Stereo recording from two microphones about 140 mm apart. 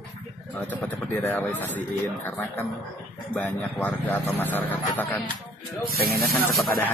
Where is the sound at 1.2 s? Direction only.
15° left (ahead or behind).